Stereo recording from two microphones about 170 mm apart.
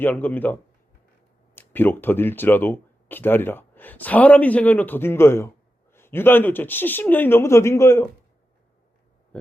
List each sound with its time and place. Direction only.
0.0 s speech: 10° left (ahead or behind)